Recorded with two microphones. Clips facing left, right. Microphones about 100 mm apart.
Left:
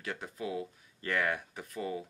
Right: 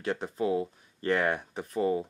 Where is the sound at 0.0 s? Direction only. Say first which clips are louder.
Right 9 dB; 30° right (ahead or behind).